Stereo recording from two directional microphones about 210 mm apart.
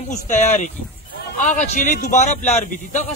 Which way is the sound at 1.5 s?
40° left (ahead or behind).